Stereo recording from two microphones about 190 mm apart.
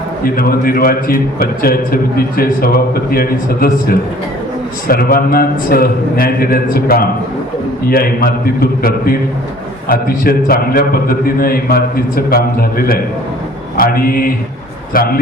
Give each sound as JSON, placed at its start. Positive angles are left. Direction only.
{"t": 0.3, "sound": "a man's voice", "side_deg": 50}
{"t": 9.9, "sound": "a man's voice", "side_deg": 50}